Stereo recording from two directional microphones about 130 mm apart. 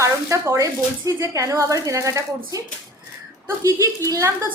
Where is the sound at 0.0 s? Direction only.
20° right (ahead or behind).